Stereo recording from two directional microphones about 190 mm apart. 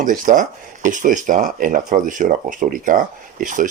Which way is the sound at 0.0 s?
45° right (ahead or behind).